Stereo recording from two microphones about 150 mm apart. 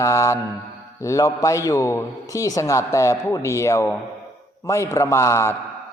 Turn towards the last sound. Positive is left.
turn(degrees=20)  # may be behind; listen again after turning